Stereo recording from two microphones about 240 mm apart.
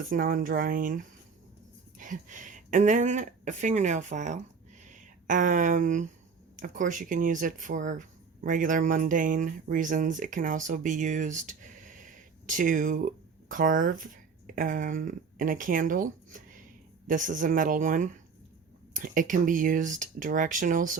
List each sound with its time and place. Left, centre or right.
0.1 s speech: right